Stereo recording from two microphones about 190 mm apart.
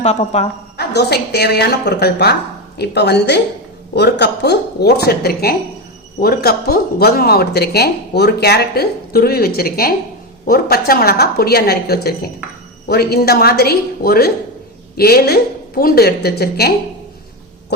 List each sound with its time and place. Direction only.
0.0 s a woman's voice: 35° left (ahead or behind)
0.8 s speech: 60° left (ahead or behind)